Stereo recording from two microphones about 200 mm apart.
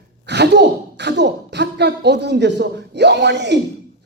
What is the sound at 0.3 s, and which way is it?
Speech, 60° right (ahead or behind).